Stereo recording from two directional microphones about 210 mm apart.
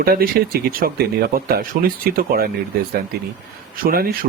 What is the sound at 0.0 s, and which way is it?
Speech, 45° right (ahead or behind).